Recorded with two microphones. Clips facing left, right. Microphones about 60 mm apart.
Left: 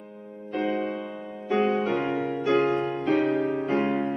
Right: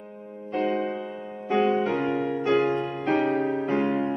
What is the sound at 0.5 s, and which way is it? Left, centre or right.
Music, right.